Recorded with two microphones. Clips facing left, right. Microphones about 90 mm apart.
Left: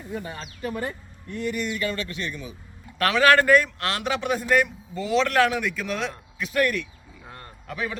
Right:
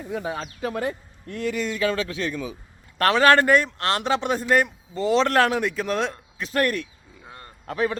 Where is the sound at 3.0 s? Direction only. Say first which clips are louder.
Right 2 dB; 35° right (ahead or behind).